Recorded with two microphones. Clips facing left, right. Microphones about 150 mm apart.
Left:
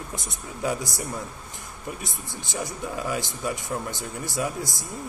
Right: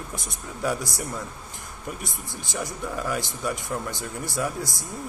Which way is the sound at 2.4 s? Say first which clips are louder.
Even; 20° left (ahead or behind).